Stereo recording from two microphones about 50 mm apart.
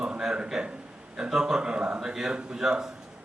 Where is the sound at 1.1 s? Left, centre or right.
Centre.